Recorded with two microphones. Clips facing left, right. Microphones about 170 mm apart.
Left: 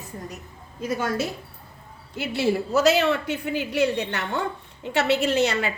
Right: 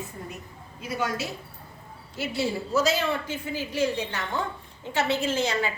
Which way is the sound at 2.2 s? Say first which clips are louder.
Left 5 dB; 65° left (ahead or behind).